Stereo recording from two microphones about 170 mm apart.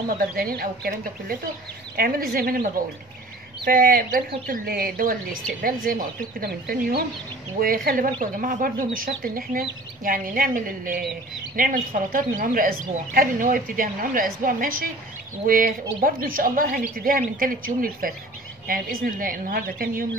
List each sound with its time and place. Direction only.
0.2 s speech: 60° right (ahead or behind)